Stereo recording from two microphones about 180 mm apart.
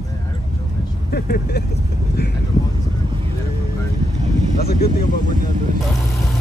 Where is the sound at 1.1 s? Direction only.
60° left (ahead or behind).